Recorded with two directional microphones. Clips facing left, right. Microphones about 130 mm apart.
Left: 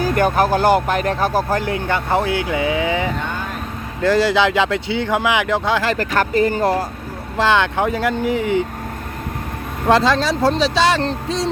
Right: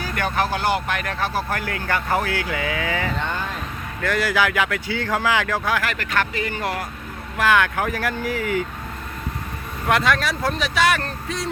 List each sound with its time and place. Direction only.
0.0 s speech: 45° left (ahead or behind)
1.5 s speech: 25° left (ahead or behind)
4.0 s speech: 30° left (ahead or behind)
7.3 s speech: 25° left (ahead or behind)
9.9 s speech: 30° left (ahead or behind)